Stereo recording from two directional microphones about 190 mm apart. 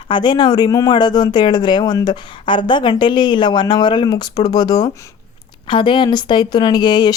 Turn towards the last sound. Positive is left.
turn(degrees=20)  # may be behind; listen again after turning